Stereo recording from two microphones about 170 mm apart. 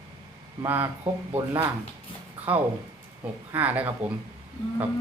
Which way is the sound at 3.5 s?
10° right (ahead or behind).